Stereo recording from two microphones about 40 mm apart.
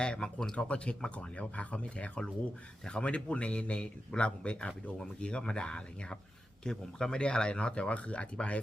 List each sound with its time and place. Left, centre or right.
0.0 s speech: left
2.9 s speech: centre
3.2 s speech: left